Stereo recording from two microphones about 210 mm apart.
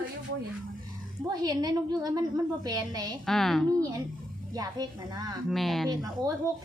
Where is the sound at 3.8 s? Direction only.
15° right (ahead or behind).